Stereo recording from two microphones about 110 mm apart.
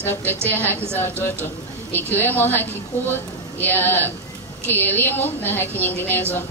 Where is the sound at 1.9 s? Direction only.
15° left (ahead or behind).